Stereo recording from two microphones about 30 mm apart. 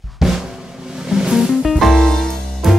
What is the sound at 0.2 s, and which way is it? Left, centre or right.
Drum, centre.